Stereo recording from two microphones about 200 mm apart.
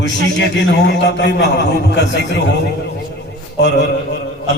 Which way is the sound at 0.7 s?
60° left (ahead or behind).